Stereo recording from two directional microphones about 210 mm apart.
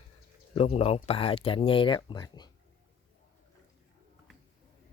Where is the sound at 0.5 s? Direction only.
30° left (ahead or behind).